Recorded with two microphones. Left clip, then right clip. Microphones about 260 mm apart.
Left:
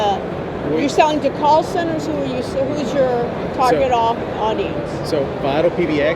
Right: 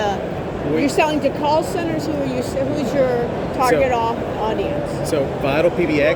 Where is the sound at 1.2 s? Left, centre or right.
Right.